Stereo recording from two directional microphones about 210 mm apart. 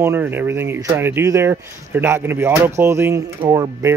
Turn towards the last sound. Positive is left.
turn(degrees=-15)  # may be behind; listen again after turning